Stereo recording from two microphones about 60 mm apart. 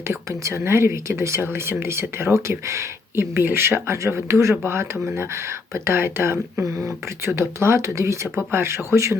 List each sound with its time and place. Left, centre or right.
0.3 s speech: right
1.4 s speech: right
3.9 s speech: right
8.5 s speech: right
8.9 s speech: right